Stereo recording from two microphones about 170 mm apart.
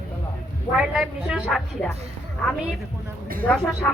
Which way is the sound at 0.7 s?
5° right (ahead or behind).